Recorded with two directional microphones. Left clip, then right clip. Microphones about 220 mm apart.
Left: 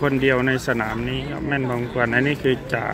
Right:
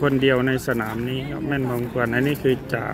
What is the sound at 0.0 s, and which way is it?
Speech, 5° right (ahead or behind).